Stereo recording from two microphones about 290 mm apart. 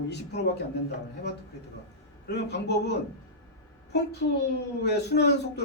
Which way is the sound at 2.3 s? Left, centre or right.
Left.